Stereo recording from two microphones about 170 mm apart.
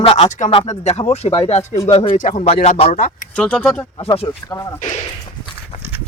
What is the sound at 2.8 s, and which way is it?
Speech, 55° left (ahead or behind).